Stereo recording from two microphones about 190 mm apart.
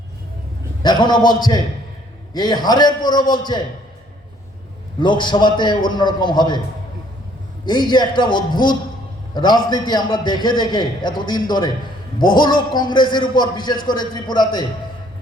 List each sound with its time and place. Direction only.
0.8 s a man's voice: 25° left (ahead or behind)
4.9 s a man's voice: 25° left (ahead or behind)
7.6 s a man's voice: 25° left (ahead or behind)